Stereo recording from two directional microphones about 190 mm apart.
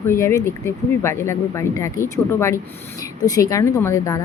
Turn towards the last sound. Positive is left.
turn(degrees=15)  # may be behind; listen again after turning